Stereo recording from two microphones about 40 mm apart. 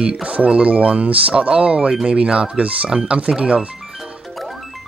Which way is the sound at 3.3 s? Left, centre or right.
Centre.